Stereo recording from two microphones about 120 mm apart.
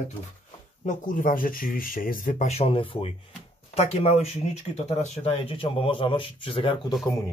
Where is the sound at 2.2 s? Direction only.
75° left (ahead or behind); by 3.1 s 50° left (ahead or behind).